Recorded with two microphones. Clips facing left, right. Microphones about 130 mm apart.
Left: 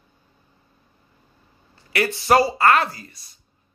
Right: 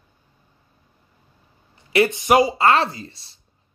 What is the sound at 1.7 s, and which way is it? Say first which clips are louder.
A man's voice: right 5 dB; 20° right (ahead or behind).